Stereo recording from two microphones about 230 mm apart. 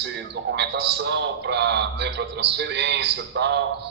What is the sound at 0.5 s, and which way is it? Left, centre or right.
A man's voice, right.